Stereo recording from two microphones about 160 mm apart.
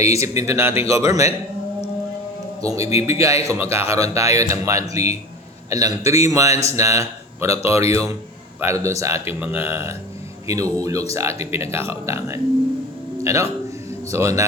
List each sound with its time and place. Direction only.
0.0 s speech: 20° right (ahead or behind)
2.6 s speech: 20° right (ahead or behind)